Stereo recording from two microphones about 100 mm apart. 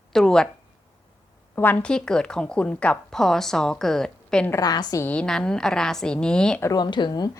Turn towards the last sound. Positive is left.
turn(degrees=40)  # may be behind; listen again after turning